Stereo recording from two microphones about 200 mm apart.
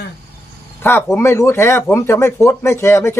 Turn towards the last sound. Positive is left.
turn(degrees=15)  # may be behind; listen again after turning